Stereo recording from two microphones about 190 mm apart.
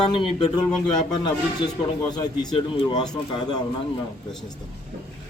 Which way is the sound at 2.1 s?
20° left (ahead or behind).